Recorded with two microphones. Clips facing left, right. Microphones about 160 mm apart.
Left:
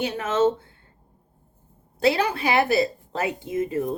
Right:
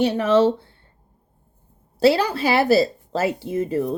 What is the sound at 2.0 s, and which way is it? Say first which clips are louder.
Speech: right 4 dB; 35° right (ahead or behind).